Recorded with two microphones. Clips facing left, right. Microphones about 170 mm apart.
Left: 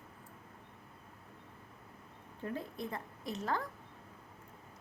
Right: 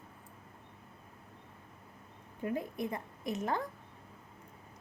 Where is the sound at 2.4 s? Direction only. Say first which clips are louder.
Right 5 dB; 15° right (ahead or behind).